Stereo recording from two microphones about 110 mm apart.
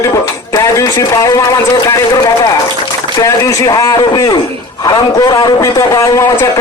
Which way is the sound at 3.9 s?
40° left (ahead or behind).